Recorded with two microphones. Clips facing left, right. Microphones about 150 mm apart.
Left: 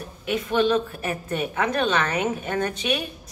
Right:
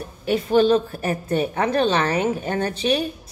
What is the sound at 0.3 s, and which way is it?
A woman's voice, 35° right (ahead or behind).